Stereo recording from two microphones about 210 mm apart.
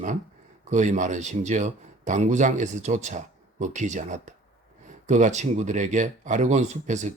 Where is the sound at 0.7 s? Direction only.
35° right (ahead or behind).